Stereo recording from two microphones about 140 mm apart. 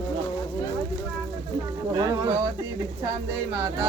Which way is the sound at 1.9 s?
25° right (ahead or behind).